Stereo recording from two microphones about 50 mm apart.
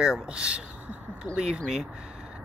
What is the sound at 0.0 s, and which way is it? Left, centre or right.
Speech, centre.